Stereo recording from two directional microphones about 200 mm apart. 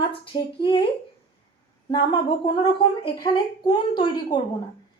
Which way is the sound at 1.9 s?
25° left (ahead or behind).